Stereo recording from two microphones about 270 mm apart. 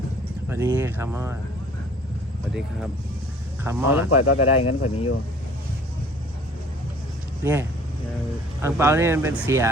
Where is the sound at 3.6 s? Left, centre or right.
Centre.